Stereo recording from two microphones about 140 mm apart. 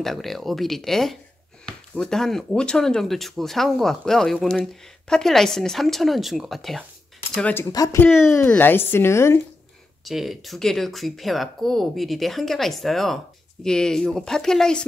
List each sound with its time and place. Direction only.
0.0 s a woman's voice: centre (ahead or behind)
7.7 s speech: 25° left (ahead or behind)
8.4 s a woman's voice: 10° left (ahead or behind)
10.0 s speech: centre (ahead or behind)